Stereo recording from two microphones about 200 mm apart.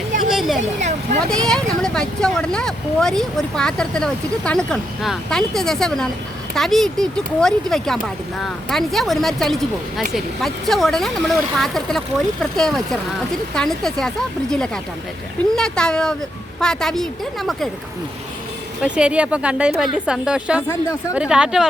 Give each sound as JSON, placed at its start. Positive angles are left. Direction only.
{"t": 0.3, "sound": "a sound", "side_deg": 0}
{"t": 0.6, "sound": "speech", "side_deg": -35}
{"t": 1.3, "sound": "speech", "side_deg": 5}
{"t": 15.5, "sound": "speech", "side_deg": 5}
{"t": 18.8, "sound": "speech", "side_deg": -5}